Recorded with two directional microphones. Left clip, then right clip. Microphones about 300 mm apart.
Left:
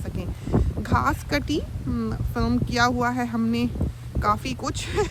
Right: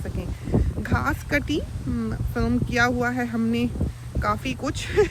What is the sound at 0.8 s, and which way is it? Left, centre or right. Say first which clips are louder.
Speech: left 5 dB; centre.